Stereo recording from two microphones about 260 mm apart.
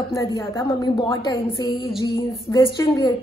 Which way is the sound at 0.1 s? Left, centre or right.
Centre.